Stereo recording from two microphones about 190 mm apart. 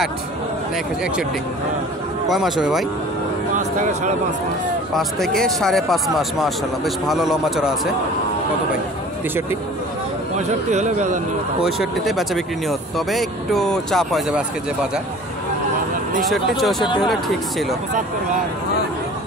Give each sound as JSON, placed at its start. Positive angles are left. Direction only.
{"t": 2.2, "sound": "speech", "side_deg": 0}
{"t": 3.5, "sound": "speech", "side_deg": -40}
{"t": 4.9, "sound": "speech", "side_deg": 0}
{"t": 10.3, "sound": "speech", "side_deg": -40}
{"t": 11.6, "sound": "speech", "side_deg": 0}
{"t": 16.3, "sound": "speech", "side_deg": 0}
{"t": 16.8, "sound": "speech", "side_deg": 25}
{"t": 17.1, "sound": "speech", "side_deg": 0}